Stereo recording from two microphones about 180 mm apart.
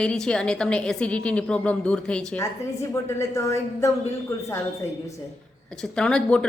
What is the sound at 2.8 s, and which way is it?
Speech, 15° left (ahead or behind).